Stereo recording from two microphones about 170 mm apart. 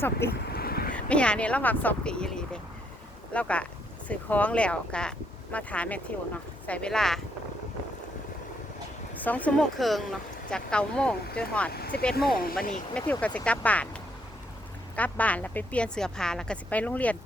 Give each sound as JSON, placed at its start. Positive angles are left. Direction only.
{"t": 0.0, "sound": "speech", "side_deg": 15}
{"t": 0.5, "sound": "a sound", "side_deg": 65}
{"t": 0.9, "sound": "speech", "side_deg": 5}
{"t": 9.2, "sound": "speech", "side_deg": 10}
{"t": 14.9, "sound": "speech", "side_deg": 10}